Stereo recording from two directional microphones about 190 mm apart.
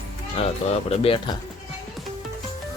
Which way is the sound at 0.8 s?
30° left (ahead or behind).